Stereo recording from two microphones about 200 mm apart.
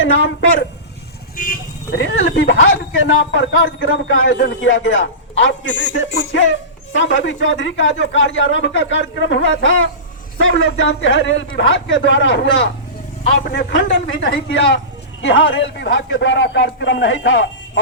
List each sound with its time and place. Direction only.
1.4 s speech: 45° left (ahead or behind)
2.0 s a man's voice: 65° left (ahead or behind)
13.2 s a man's voice: 55° left (ahead or behind)